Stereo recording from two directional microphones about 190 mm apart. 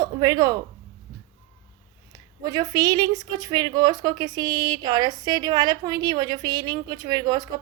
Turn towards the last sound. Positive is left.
turn(degrees=-20)  # may be behind; listen again after turning